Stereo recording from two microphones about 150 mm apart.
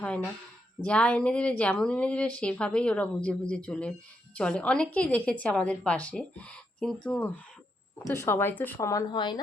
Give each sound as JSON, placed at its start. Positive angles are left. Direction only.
{"t": 0.8, "sound": "speech", "side_deg": 10}